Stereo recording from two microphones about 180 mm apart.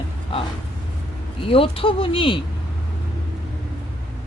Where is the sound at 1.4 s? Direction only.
30° left (ahead or behind).